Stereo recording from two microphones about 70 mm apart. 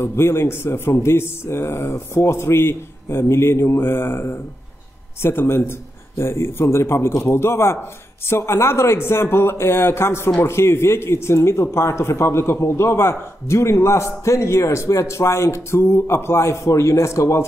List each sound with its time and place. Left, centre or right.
0.0 s a man's voice: left